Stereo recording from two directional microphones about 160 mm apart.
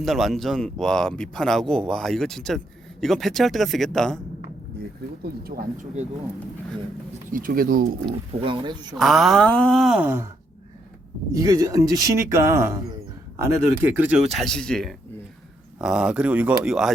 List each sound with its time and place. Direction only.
0.0 s a man's voice: centre (ahead or behind)
5.2 s speech: 75° right (ahead or behind)
7.3 s speech: 65° right (ahead or behind)
8.4 s speech: 30° right (ahead or behind)
9.0 s a man's voice: centre (ahead or behind)
11.3 s speech: 20° right (ahead or behind)
14.3 s a man's voice: 5° left (ahead or behind)